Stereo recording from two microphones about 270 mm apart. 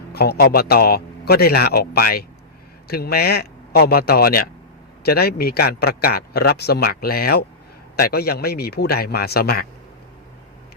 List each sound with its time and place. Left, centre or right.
0.1 s speech: left